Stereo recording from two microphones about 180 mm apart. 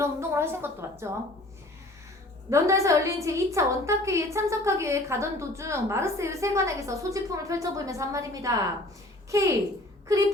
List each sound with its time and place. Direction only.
0.0 s a woman's voice: 15° right (ahead or behind)
2.5 s a woman's voice: 15° right (ahead or behind)